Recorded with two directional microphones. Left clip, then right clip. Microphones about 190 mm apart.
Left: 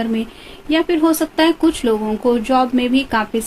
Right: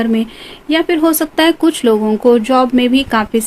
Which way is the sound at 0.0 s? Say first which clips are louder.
Right 5 dB; 55° right (ahead or behind).